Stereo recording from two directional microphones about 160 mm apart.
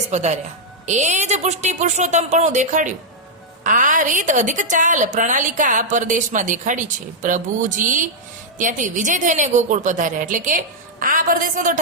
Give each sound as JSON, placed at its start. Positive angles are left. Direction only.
{"t": 0.1, "sound": "a woman's voice", "side_deg": -45}